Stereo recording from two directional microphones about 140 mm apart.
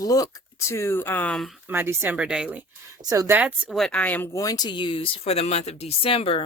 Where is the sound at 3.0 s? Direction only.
25° right (ahead or behind).